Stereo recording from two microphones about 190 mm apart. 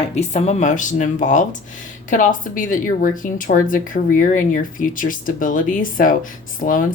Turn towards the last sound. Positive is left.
turn(degrees=45)  # may be behind; listen again after turning